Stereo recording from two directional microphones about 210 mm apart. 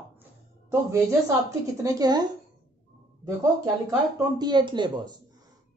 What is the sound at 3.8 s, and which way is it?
Speech, 20° right (ahead or behind).